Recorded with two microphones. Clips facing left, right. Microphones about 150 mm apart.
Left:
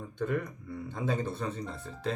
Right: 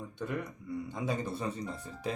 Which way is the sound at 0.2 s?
50° left (ahead or behind).